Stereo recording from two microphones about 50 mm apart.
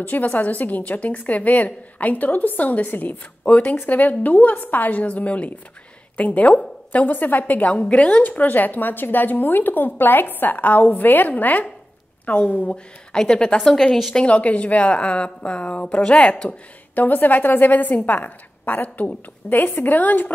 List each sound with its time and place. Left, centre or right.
0.0 s a woman's voice: left
13.1 s a woman's voice: centre
14.1 s a woman's voice: left
16.9 s a woman's voice: left